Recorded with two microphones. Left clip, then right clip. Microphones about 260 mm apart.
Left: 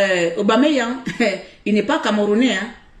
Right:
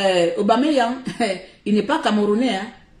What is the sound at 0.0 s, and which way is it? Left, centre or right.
A woman's voice, centre.